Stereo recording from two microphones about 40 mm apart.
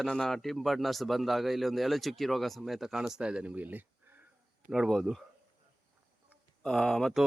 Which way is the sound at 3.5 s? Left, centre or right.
Right.